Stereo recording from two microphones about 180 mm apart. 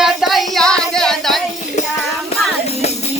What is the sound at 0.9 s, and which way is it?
Music, 5° left (ahead or behind).